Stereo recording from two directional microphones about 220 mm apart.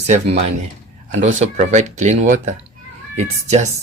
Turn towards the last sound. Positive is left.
turn(degrees=-30)  # may be behind; listen again after turning